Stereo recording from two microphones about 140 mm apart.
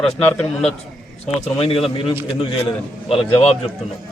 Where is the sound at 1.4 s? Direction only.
45° left (ahead or behind).